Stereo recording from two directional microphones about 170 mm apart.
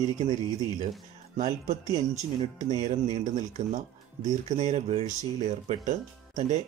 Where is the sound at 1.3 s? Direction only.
50° right (ahead or behind).